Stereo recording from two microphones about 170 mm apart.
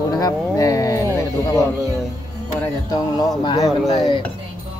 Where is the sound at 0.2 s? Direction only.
20° left (ahead or behind).